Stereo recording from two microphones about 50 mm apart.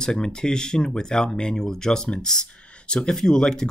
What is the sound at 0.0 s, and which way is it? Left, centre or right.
Speech, centre.